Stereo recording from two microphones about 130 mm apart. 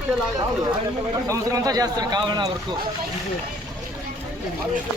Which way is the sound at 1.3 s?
25° right (ahead or behind).